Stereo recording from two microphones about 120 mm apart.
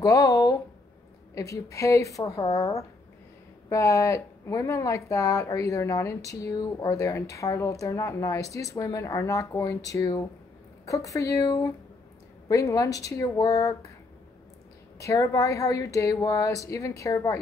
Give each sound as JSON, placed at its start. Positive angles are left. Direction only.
{"t": 0.0, "sound": "a sound", "side_deg": 30}
{"t": 1.3, "sound": "speech", "side_deg": 30}
{"t": 15.0, "sound": "speech", "side_deg": 25}